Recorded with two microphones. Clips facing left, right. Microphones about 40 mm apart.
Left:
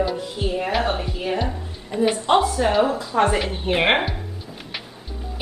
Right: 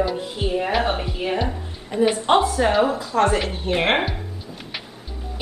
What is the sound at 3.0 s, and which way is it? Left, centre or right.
Speech, centre.